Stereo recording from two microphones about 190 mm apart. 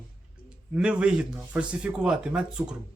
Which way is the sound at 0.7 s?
5° right (ahead or behind).